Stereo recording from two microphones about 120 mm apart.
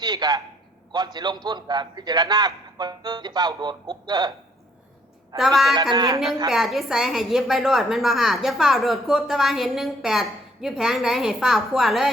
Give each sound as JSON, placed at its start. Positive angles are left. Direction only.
{"t": 0.0, "sound": "a man's voice", "side_deg": -35}
{"t": 5.4, "sound": "a woman's voice", "side_deg": 0}
{"t": 5.9, "sound": "a man's voice", "side_deg": -35}
{"t": 6.5, "sound": "a woman's voice", "side_deg": 0}